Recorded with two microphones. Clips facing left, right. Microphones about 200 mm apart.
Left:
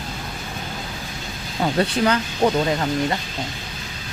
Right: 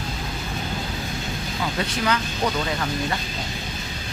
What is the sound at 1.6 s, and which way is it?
Speech, 35° left (ahead or behind).